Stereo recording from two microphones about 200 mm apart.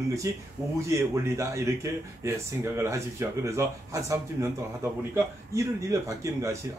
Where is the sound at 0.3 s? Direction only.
15° right (ahead or behind).